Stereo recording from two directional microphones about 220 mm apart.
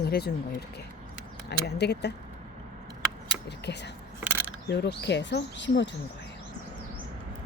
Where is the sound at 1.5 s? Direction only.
50° left (ahead or behind).